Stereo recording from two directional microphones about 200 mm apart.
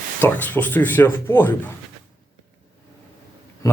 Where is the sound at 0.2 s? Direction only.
10° left (ahead or behind).